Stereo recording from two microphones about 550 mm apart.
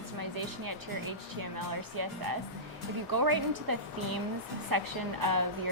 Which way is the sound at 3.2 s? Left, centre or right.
Right.